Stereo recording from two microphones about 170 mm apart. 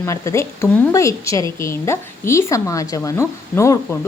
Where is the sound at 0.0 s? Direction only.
15° left (ahead or behind).